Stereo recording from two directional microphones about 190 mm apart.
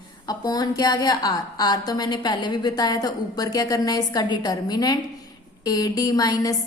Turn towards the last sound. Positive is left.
turn(degrees=20)  # may be behind; listen again after turning